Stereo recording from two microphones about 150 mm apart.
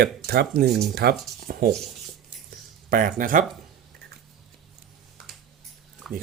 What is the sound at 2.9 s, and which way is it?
Speech, 65° right (ahead or behind).